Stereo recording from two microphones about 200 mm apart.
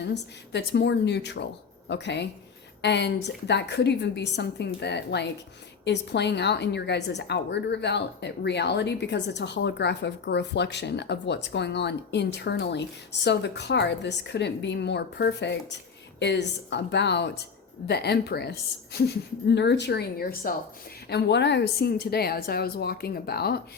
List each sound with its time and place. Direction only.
0.0 s a woman's voice: 60° left (ahead or behind)